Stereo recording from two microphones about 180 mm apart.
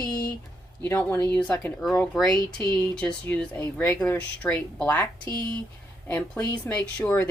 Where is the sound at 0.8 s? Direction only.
10° left (ahead or behind).